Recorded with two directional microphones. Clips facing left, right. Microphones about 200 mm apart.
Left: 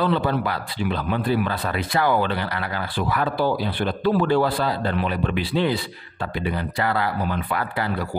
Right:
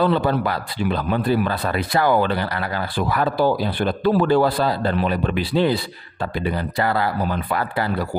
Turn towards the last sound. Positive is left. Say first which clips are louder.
# right 2 dB
turn(degrees=-40)  # may be behind; listen again after turning